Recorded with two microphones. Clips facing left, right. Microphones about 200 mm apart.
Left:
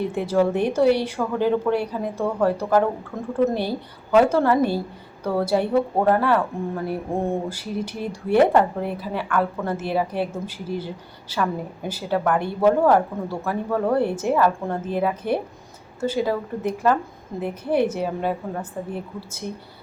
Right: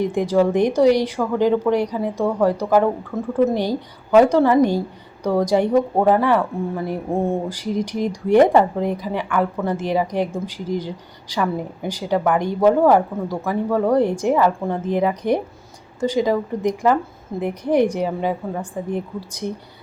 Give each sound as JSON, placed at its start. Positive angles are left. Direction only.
{"t": 0.0, "sound": "a woman's voice", "side_deg": -15}